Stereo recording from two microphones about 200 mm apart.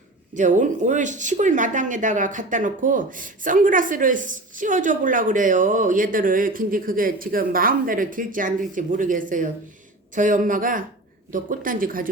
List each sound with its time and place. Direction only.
0.3 s speech: 40° right (ahead or behind)